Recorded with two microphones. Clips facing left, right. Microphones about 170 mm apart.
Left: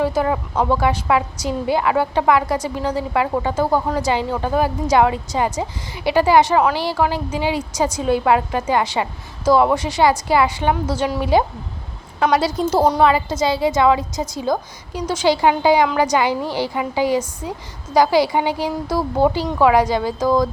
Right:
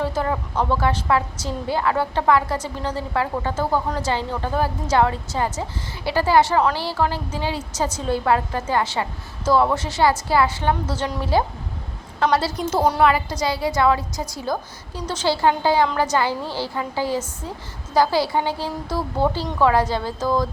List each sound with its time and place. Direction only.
0.0 s a woman's voice: 10° left (ahead or behind)
12.5 s a woman's voice: 25° left (ahead or behind)